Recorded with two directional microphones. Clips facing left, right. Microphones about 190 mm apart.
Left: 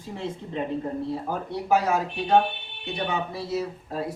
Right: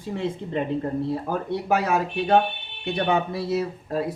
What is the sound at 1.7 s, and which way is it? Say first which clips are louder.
Speech: left 1 dB; 60° right (ahead or behind).